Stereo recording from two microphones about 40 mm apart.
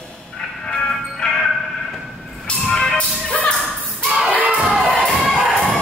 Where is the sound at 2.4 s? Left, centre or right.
Centre.